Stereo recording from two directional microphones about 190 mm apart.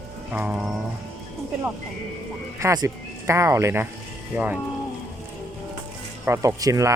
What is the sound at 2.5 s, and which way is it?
Speech, 20° right (ahead or behind).